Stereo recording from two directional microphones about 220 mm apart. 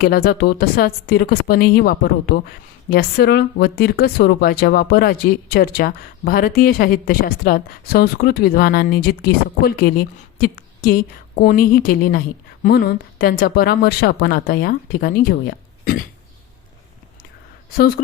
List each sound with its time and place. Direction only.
0.0 s speech: 45° left (ahead or behind)
17.7 s a woman's voice: 40° left (ahead or behind)